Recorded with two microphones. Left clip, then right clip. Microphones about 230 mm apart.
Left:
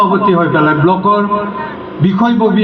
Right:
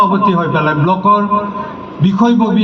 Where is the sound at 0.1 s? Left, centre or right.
Left.